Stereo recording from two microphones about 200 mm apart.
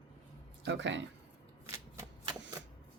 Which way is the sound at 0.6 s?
65° right (ahead or behind).